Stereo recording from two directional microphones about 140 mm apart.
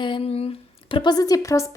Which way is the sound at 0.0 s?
40° left (ahead or behind).